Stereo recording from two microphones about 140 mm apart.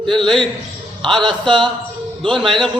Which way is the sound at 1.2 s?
35° right (ahead or behind).